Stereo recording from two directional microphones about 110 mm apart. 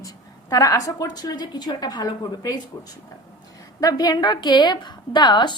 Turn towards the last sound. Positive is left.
turn(degrees=40)  # may be behind; listen again after turning